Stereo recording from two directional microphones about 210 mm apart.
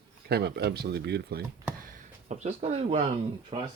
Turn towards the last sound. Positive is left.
turn(degrees=-30)  # may be behind; listen again after turning